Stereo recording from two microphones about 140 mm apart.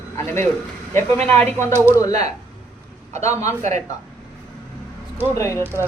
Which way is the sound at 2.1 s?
55° right (ahead or behind).